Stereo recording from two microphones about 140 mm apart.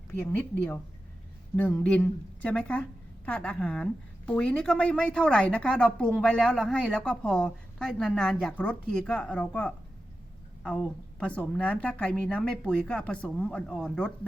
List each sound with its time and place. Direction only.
0.1 s a woman's voice: 15° left (ahead or behind)
11.2 s a woman's voice: 10° left (ahead or behind)